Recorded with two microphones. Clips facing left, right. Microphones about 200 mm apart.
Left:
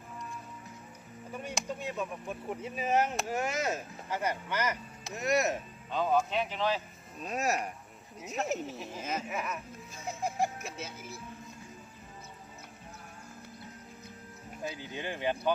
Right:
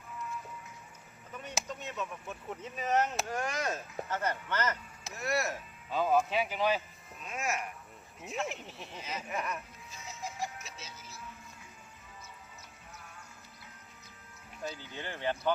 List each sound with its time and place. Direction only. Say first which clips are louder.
1.6 s a sound: left 4 dB; 10° left (ahead or behind)
2.6 s speech: left 1 dB; 10° left (ahead or behind)
3.3 s speech: left 4 dB; 25° left (ahead or behind)
3.7 s speech: left 1 dB; 10° left (ahead or behind)
5.9 s speech: even; 5° right (ahead or behind)
7.2 s speech: left 5 dB; 35° left (ahead or behind)
9.3 s speech: even; centre (ahead or behind)
9.9 s music: left 7 dB; 55° left (ahead or behind)
14.6 s speech: left 2 dB; 15° left (ahead or behind)